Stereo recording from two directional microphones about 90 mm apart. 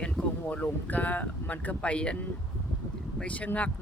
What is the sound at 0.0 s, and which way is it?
Speech, 15° left (ahead or behind).